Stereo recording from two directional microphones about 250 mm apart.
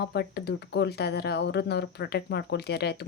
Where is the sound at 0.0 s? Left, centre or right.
Left.